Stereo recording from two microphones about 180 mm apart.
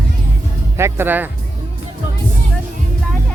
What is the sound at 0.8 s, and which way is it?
Speech, 15° right (ahead or behind).